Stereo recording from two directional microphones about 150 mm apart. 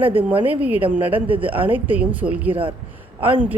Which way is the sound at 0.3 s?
10° right (ahead or behind).